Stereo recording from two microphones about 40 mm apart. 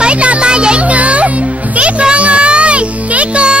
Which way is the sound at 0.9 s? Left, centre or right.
Right.